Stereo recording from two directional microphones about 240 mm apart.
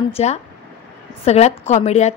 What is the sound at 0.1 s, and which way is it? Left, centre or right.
A woman's voice, left.